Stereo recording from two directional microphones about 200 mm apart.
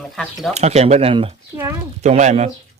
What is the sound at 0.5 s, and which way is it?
Speech, 35° right (ahead or behind).